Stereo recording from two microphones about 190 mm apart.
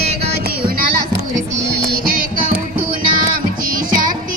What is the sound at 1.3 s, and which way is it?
Music, 45° right (ahead or behind).